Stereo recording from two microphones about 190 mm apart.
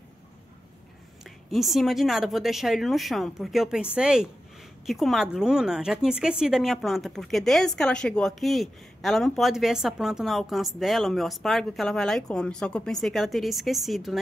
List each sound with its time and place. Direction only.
1.2 s speech: centre (ahead or behind)